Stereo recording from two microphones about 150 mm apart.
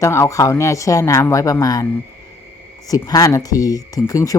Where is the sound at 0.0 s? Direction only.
20° left (ahead or behind).